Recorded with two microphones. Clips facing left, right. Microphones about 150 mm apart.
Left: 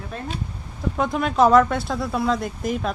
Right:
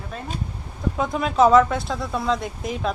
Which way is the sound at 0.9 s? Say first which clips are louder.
Even; centre (ahead or behind).